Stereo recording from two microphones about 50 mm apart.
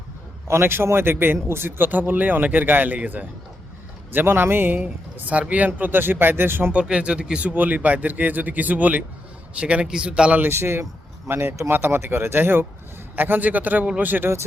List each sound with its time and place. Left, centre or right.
0.4 s a man's voice: right
4.1 s a man's voice: right
6.7 s speech: right
10.5 s a man's voice: right